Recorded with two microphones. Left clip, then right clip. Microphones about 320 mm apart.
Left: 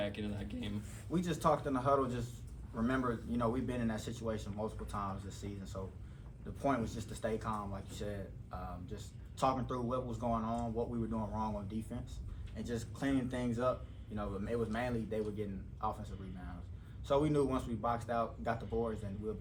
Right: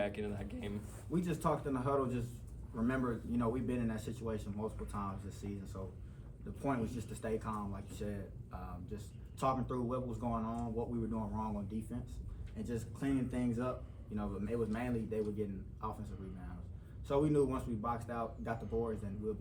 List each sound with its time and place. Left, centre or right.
0.0 s a sound: right
1.1 s speech: centre
17.1 s speech: centre